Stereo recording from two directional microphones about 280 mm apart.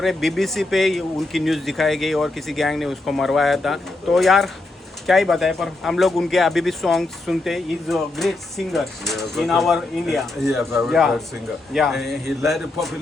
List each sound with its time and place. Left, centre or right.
0.0 s speech: centre